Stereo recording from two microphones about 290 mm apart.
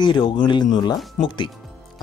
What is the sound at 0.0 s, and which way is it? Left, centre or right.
Speech, centre.